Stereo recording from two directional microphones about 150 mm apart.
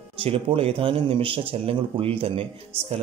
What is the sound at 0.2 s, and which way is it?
A man's voice, 35° right (ahead or behind).